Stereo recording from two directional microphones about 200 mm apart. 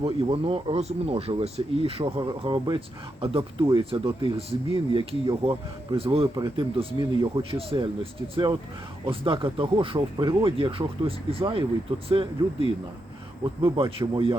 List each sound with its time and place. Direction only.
0.0 s speech: 30° right (ahead or behind)
9.0 s speech: 25° right (ahead or behind)
13.7 s speech: 25° right (ahead or behind)